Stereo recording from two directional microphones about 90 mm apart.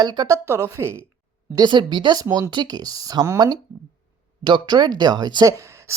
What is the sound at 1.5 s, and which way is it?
Speech, 55° right (ahead or behind).